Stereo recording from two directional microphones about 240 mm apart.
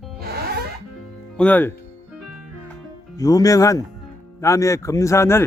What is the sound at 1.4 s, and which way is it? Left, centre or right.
Speech, centre.